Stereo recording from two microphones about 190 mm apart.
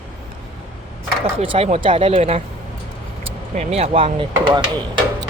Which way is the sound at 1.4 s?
30° right (ahead or behind).